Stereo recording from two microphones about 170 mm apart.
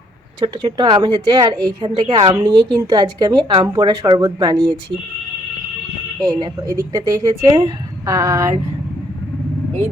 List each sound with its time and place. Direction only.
0.3 s a woman's voice: 25° right (ahead or behind)
6.2 s a woman's voice: 20° right (ahead or behind)
8.0 s a woman's voice: 20° right (ahead or behind)